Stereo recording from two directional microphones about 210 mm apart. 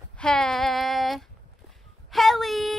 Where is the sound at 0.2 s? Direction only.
5° left (ahead or behind).